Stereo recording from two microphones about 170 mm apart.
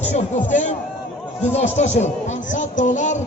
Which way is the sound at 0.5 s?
45° left (ahead or behind).